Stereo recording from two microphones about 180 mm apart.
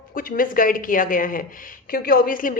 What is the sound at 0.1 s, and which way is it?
A woman's voice, 50° left (ahead or behind).